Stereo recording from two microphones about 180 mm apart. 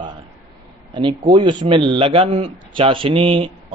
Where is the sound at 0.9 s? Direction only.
25° right (ahead or behind).